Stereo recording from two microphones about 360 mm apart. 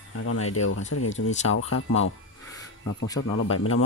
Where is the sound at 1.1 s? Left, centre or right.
Centre.